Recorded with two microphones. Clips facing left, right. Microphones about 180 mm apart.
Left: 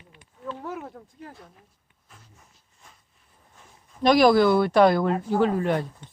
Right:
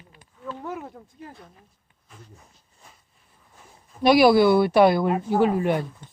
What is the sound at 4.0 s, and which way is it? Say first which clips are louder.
Speech: right 1 dB; 10° right (ahead or behind).